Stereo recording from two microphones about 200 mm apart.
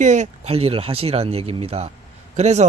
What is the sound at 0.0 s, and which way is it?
Speech, 40° right (ahead or behind).